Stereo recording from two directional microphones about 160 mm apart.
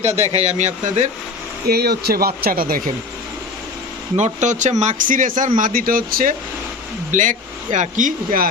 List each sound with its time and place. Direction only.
0.0 s speech: 40° right (ahead or behind)
1.6 s speech: 75° right (ahead or behind)
4.2 s speech: 50° right (ahead or behind); by 6.3 s 65° right (ahead or behind)
7.1 s speech: 55° right (ahead or behind)